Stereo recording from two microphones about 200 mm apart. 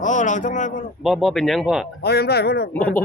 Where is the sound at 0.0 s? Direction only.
40° left (ahead or behind).